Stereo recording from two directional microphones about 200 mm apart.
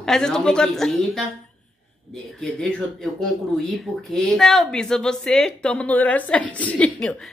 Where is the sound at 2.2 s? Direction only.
5° left (ahead or behind).